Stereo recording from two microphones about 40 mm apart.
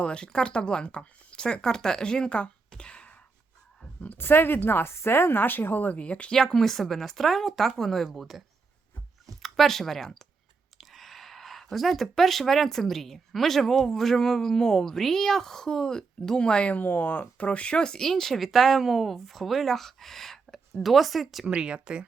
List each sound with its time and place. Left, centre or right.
0.0 s speech: left
2.6 s a sound: left
4.2 s speech: left
6.0 s speech: left
6.3 s speech: centre
9.4 s speech: centre
16.4 s speech: left
16.7 s speech: left; by 21.4 s centre
21.4 s speech: right